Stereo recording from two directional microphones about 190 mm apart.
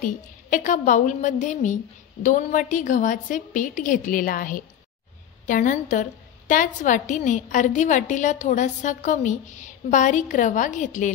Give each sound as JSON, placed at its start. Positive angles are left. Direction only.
{"t": 0.0, "sound": "a woman's voice", "side_deg": 45}